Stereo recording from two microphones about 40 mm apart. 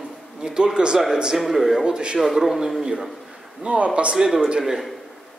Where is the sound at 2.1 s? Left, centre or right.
Centre.